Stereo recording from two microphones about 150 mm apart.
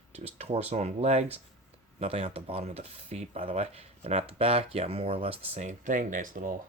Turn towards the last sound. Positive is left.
turn(degrees=-60)  # may be behind; listen again after turning